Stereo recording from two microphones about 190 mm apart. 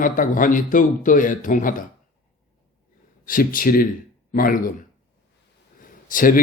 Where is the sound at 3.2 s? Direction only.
45° left (ahead or behind).